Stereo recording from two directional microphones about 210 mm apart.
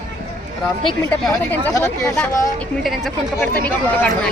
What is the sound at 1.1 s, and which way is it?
Speech, 5° left (ahead or behind).